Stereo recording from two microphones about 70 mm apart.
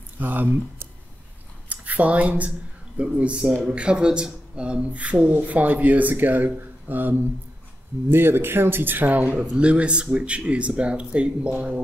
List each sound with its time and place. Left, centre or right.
0.2 s speech: right